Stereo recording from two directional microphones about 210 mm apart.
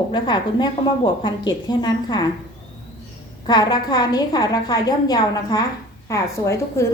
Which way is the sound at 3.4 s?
20° left (ahead or behind).